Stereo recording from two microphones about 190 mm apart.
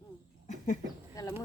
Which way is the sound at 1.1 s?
20° left (ahead or behind).